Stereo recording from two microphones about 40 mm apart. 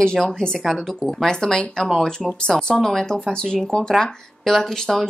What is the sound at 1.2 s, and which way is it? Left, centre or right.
A woman's voice, centre.